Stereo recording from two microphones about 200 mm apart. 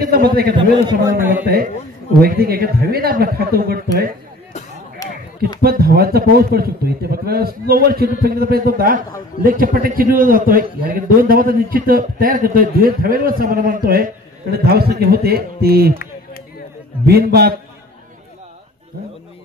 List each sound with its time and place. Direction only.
0.0 s a man's voice: 50° right (ahead or behind)
5.0 s a sound: 15° left (ahead or behind)
5.6 s a man's voice: 50° right (ahead or behind)
17.0 s a man's voice: 50° right (ahead or behind)